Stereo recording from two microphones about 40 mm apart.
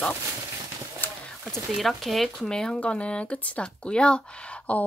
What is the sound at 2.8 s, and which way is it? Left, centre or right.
A woman's voice, left.